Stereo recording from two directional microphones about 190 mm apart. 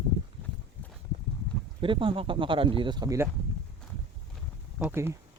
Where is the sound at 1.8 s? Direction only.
25° right (ahead or behind).